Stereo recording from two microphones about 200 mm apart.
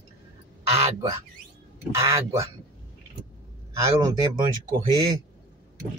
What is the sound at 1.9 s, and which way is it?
Speech, 15° right (ahead or behind).